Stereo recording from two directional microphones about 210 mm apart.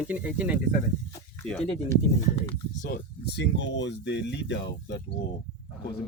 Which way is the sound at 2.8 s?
40° left (ahead or behind).